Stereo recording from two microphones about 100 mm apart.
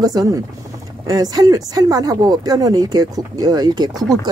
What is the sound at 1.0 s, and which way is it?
Speech, 40° right (ahead or behind).